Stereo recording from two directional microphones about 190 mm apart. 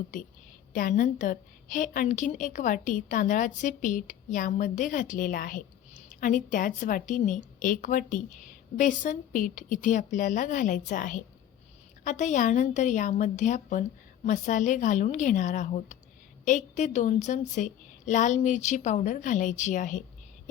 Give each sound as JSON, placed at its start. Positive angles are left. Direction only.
{"t": 0.7, "sound": "a woman's voice", "side_deg": 45}